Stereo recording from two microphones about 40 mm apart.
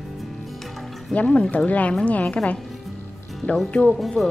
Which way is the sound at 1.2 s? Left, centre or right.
Left.